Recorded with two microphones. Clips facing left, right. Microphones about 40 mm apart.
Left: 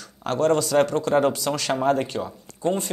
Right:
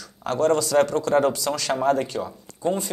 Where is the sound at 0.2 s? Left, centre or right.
Left.